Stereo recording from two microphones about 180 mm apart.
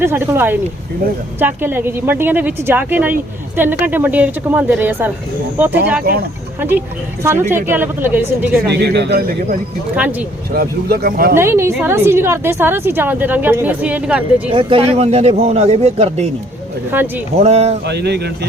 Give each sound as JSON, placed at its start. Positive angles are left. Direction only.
{"t": 0.0, "sound": "a woman's voice", "side_deg": -15}
{"t": 8.7, "sound": "a man's voice", "side_deg": -70}
{"t": 9.9, "sound": "a woman's voice", "side_deg": -10}
{"t": 10.5, "sound": "speech", "side_deg": -55}
{"t": 11.3, "sound": "a woman's voice", "side_deg": -15}
{"t": 14.5, "sound": "speech", "side_deg": -30}
{"t": 16.9, "sound": "a woman's voice", "side_deg": -10}
{"t": 17.4, "sound": "speech", "side_deg": -35}
{"t": 17.8, "sound": "a man's voice", "side_deg": -70}